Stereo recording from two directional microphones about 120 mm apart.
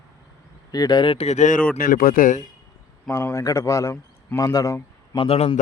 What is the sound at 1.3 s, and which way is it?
A man's voice, 85° left.